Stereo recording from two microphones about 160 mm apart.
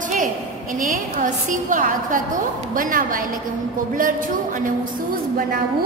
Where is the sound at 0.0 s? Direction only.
55° right (ahead or behind).